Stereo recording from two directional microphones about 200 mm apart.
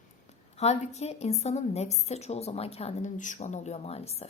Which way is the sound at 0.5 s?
35° left (ahead or behind).